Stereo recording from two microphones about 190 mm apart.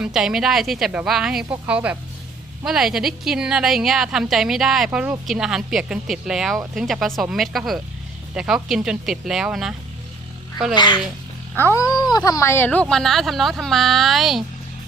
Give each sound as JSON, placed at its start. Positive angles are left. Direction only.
{"t": 0.0, "sound": "a woman's voice", "side_deg": -5}
{"t": 11.5, "sound": "a woman's voice", "side_deg": 10}